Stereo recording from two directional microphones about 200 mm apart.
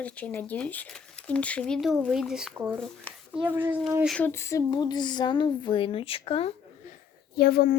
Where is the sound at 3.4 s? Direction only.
10° right (ahead or behind).